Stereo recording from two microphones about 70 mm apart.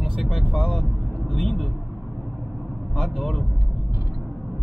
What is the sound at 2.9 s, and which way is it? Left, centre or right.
Speech, centre.